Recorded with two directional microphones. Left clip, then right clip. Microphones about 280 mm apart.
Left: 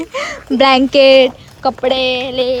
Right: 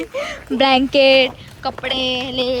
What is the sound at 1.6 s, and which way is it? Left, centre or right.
Speech, left.